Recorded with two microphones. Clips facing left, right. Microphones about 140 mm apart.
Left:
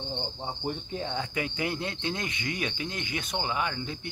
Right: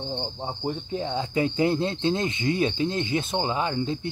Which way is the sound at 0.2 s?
20° right (ahead or behind).